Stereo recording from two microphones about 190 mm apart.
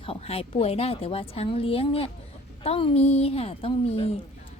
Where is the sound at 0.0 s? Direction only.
30° left (ahead or behind).